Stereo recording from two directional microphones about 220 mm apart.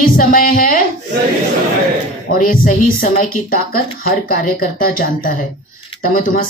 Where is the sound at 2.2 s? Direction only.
40° left (ahead or behind).